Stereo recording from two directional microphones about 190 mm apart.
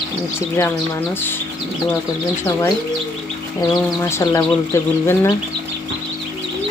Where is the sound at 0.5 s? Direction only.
15° left (ahead or behind).